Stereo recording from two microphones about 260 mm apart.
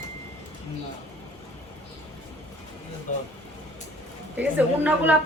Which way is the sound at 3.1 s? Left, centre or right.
Left.